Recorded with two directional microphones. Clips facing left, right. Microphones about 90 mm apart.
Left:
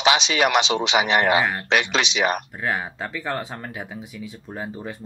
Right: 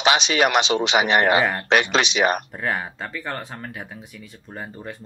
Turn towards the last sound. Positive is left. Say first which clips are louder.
# left 2 dB
turn(degrees=0)  # may be behind; listen again after turning